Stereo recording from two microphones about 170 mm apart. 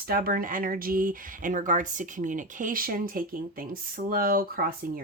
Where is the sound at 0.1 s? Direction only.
60° right (ahead or behind).